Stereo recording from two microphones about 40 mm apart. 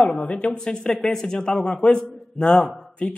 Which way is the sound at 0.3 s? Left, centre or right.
Left.